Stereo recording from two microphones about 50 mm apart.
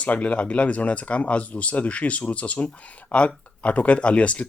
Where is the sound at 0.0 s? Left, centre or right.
Left.